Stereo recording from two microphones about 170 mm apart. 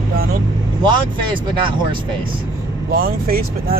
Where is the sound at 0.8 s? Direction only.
30° right (ahead or behind).